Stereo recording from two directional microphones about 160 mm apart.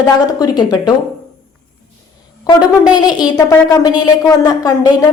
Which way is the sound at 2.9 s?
25° left (ahead or behind).